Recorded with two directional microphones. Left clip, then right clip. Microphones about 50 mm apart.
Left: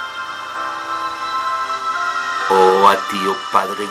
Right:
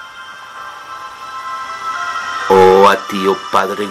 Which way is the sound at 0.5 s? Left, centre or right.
Left.